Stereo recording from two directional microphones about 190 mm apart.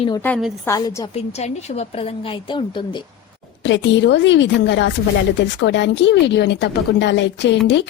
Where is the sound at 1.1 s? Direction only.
35° left (ahead or behind).